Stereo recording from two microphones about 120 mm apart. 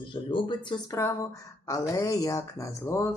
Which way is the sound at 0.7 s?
30° left (ahead or behind).